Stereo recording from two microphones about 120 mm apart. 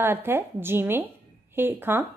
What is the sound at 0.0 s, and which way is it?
A woman's voice, 20° right (ahead or behind).